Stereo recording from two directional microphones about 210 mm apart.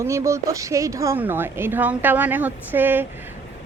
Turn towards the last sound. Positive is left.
turn(degrees=-10)  # may be behind; listen again after turning